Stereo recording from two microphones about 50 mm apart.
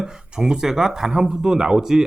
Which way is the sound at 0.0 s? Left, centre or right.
Centre.